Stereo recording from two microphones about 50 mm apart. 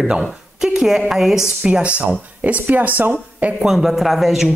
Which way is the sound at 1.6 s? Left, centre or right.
Centre.